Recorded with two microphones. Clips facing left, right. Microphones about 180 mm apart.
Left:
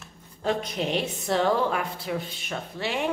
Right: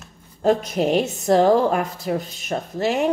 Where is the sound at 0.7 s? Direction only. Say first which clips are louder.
Right 8 dB; 45° right (ahead or behind).